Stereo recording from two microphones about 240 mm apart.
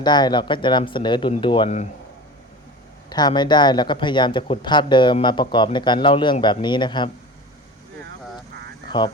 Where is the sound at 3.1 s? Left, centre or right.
Centre.